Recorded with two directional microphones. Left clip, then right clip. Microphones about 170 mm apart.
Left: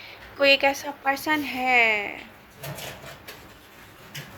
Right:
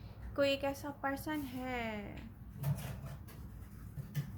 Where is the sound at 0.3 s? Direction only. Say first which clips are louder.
Left 14 dB; 10° left (ahead or behind).